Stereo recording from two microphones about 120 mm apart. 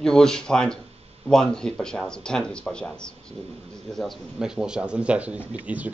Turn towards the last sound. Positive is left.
turn(degrees=-10)  # may be behind; listen again after turning